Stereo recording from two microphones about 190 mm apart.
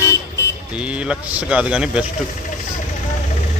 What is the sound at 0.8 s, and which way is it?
Speech, 5° right (ahead or behind).